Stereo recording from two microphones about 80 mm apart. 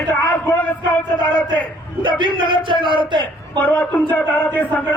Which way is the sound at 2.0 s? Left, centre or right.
Right.